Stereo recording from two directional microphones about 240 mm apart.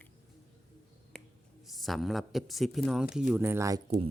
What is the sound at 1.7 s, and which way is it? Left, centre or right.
Speech, centre.